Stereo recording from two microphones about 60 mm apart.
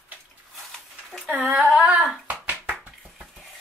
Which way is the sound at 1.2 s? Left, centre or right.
Right.